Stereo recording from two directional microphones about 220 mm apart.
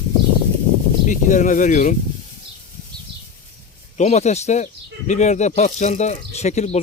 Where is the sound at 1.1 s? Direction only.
35° left (ahead or behind).